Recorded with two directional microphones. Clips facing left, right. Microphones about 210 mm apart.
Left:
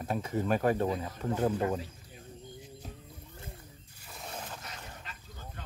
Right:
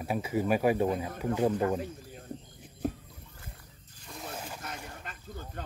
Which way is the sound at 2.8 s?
55° right (ahead or behind).